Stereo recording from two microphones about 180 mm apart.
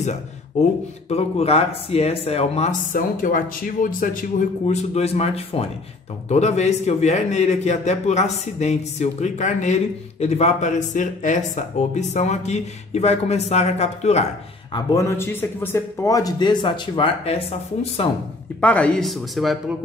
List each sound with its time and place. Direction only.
0.6 s speech: 40° left (ahead or behind)
2.9 s speech: 50° left (ahead or behind)
14.7 s a man's voice: 15° left (ahead or behind)
18.6 s speech: 5° left (ahead or behind)